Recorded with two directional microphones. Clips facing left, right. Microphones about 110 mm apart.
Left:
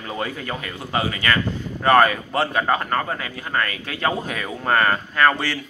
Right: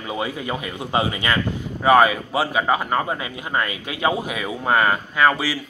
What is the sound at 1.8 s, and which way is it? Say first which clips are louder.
Speech: right 1 dB; 5° right (ahead or behind).